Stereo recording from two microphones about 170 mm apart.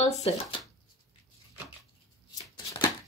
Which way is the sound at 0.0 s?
40° left (ahead or behind).